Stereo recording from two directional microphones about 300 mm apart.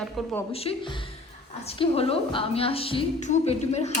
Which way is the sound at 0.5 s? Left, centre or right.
Centre.